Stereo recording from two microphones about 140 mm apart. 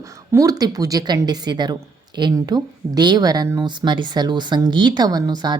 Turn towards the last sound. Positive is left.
turn(degrees=-30)  # may be behind; listen again after turning